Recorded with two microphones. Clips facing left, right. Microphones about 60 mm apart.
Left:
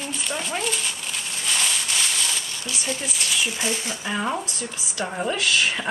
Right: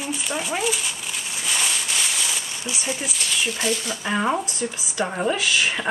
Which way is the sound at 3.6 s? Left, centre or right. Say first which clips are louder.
Right 2 dB; left.